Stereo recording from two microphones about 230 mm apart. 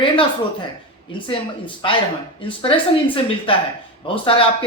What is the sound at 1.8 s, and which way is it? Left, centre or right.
Speech, left.